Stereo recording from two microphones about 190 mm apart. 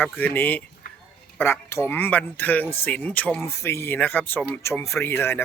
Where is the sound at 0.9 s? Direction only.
50° left (ahead or behind).